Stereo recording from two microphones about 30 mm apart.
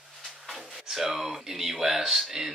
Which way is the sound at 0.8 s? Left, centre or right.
Centre.